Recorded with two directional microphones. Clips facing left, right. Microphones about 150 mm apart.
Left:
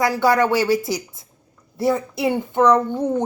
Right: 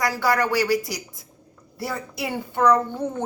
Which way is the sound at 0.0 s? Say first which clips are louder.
Left 5 dB; 25° left (ahead or behind).